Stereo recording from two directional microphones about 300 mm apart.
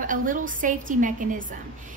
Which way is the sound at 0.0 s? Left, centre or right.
Right.